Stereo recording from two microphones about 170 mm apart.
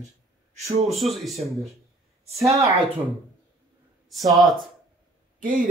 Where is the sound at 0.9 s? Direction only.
Centre (ahead or behind).